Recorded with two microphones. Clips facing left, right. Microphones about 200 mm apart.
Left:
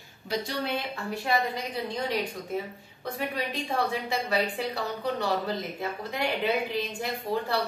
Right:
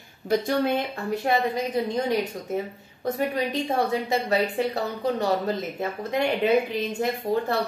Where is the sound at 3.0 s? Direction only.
40° right (ahead or behind).